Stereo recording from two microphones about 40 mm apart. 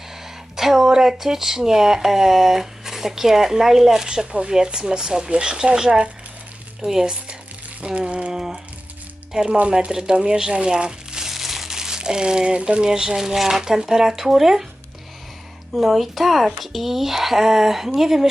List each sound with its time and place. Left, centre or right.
0.5 s speech: centre
7.9 s speech: right
8.3 s a sound: centre
9.5 s speech: right
11.2 s speech: centre
15.7 s speech: centre